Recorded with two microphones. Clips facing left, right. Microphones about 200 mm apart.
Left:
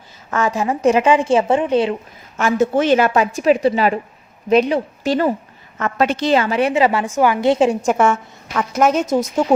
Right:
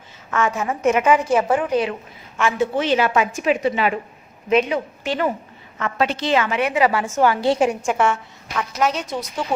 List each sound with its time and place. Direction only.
0.3 s a woman's voice: 35° left (ahead or behind)
2.4 s a woman's voice: 40° left (ahead or behind); by 7.8 s 25° left (ahead or behind)
7.8 s a woman's voice: 40° left (ahead or behind)